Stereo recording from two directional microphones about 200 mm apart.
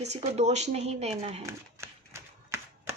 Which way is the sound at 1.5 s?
15° right (ahead or behind).